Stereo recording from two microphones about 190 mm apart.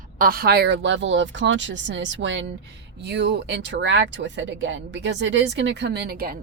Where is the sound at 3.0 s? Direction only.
65° right (ahead or behind).